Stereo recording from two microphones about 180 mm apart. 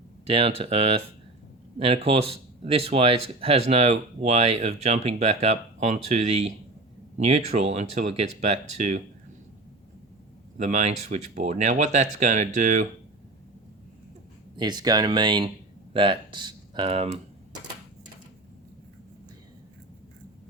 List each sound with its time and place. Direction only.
0.3 s speech: 30° right (ahead or behind)
10.6 s speech: 40° right (ahead or behind)
14.5 s speech: 25° right (ahead or behind)